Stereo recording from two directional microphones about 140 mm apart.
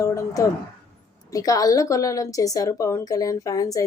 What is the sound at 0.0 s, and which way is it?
A woman's voice, 25° left (ahead or behind).